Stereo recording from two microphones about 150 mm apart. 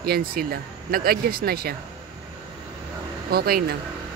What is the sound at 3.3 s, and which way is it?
Speech, 90° right.